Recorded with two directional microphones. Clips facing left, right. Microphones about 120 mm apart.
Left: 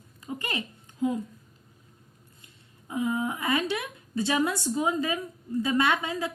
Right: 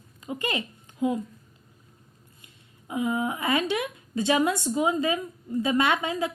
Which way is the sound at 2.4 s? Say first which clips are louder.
Right 3 dB; 15° right (ahead or behind).